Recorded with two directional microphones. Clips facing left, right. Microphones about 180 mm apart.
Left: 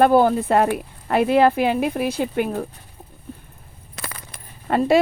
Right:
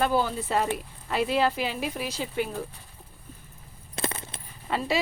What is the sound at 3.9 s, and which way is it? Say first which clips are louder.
Coin: right 5 dB; 25° right (ahead or behind).